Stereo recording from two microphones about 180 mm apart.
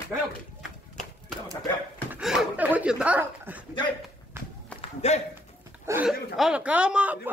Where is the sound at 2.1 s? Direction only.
Centre (ahead or behind).